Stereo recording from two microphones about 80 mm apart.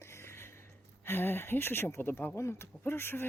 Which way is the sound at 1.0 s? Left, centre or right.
Left.